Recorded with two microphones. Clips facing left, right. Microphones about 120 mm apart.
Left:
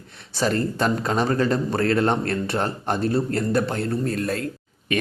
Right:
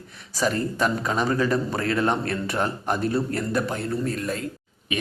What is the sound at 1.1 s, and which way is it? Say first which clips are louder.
A man's voice: left 2 dB; 35° left (ahead or behind).